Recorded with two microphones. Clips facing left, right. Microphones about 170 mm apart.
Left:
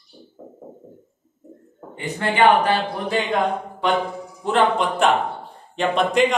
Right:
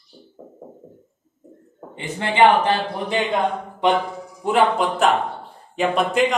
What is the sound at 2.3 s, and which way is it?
Speech, 20° right (ahead or behind).